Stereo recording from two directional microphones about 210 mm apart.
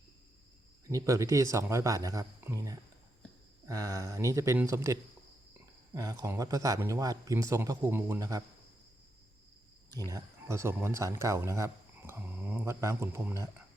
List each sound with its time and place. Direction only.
0.9 s speech: 15° right (ahead or behind)
10.1 s speech: 15° right (ahead or behind)